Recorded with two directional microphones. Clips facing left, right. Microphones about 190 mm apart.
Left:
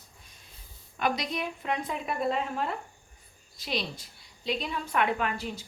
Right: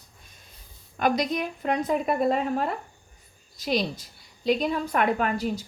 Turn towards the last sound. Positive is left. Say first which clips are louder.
# right 6 dB
turn(degrees=-40)  # may be behind; listen again after turning